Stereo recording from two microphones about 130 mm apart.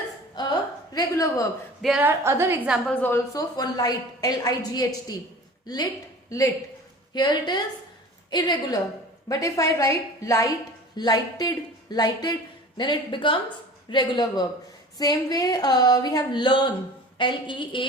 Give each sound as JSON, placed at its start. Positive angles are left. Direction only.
{"t": 0.4, "sound": "a sound", "side_deg": 35}
{"t": 0.9, "sound": "a woman's voice", "side_deg": 25}
{"t": 2.0, "sound": "a woman's voice", "side_deg": -20}
{"t": 2.6, "sound": "a woman's voice", "side_deg": -5}
{"t": 2.9, "sound": "a woman's voice", "side_deg": 15}
{"t": 7.1, "sound": "a woman's voice", "side_deg": 35}